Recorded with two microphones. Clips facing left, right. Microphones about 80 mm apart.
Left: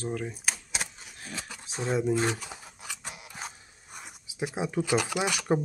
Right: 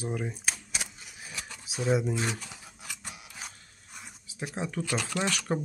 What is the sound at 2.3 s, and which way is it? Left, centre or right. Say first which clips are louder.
Scissors: left 2 dB; centre.